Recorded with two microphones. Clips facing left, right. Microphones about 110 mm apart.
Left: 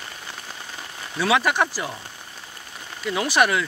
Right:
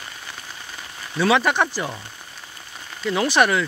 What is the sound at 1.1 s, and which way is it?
Speech, 5° left (ahead or behind).